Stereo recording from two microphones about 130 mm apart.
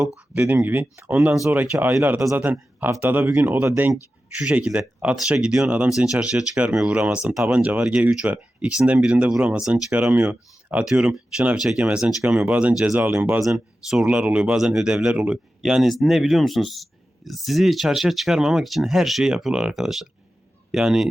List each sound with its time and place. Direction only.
0.3 s speech: 15° right (ahead or behind)